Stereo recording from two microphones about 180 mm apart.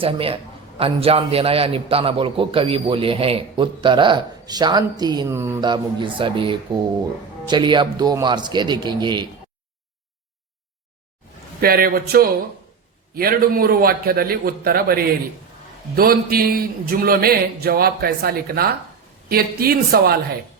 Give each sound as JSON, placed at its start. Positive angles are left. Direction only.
{"t": 0.0, "sound": "a man's voice", "side_deg": -30}
{"t": 5.6, "sound": "a man's voice", "side_deg": -25}
{"t": 11.6, "sound": "speech", "side_deg": -55}